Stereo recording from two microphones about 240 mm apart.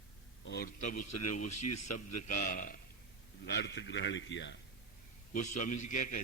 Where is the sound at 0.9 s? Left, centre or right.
Left.